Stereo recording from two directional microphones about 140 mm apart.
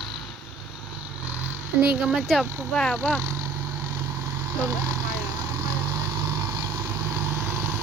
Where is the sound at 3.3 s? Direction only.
20° right (ahead or behind).